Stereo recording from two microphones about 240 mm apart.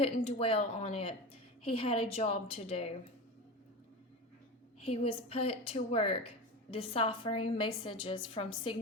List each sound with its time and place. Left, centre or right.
0.0 s a woman's voice: left
4.8 s a woman's voice: left